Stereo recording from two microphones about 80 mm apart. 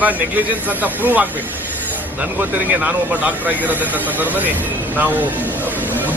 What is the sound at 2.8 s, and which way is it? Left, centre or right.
Speech, centre.